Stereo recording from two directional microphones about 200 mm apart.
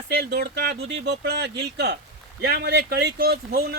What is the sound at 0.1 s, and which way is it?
Speech, 55° right (ahead or behind).